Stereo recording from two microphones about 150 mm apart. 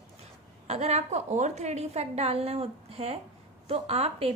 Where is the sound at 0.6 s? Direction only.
45° right (ahead or behind).